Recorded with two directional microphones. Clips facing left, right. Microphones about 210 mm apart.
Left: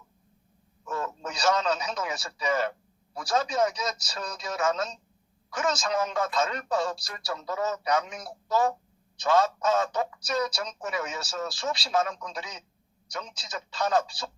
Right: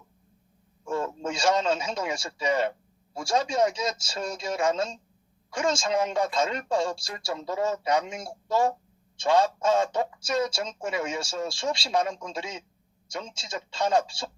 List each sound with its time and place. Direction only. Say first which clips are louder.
0.9 s a man's voice: right 4 dB; 25° right (ahead or behind)